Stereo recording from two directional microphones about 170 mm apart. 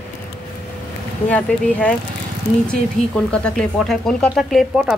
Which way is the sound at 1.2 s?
10° left (ahead or behind).